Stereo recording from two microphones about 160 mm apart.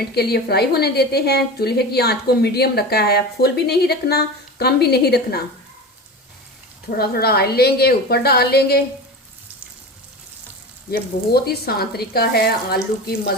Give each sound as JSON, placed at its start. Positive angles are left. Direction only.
{"t": 0.1, "sound": "a woman's voice", "side_deg": 85}
{"t": 6.9, "sound": "a woman's voice", "side_deg": 75}
{"t": 10.9, "sound": "speech", "side_deg": 75}